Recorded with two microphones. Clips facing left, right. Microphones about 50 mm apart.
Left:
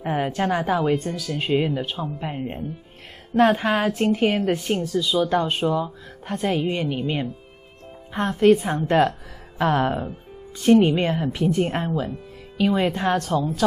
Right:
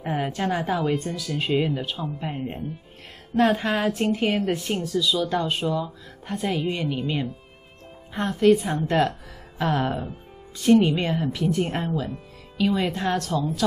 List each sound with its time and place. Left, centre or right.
0.0 s a woman's voice: centre
0.9 s a woman's voice: centre
3.3 s a woman's voice: centre
4.9 s a woman's voice: left; by 12.0 s centre
12.5 s a woman's voice: centre